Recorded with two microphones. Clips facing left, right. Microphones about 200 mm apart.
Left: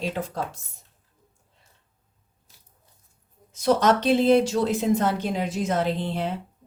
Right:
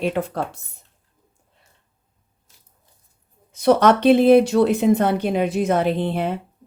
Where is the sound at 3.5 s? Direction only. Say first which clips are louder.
Right 5 dB; 60° right (ahead or behind).